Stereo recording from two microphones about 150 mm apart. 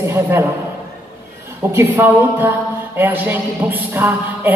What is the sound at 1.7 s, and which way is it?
A woman's voice, 15° right (ahead or behind).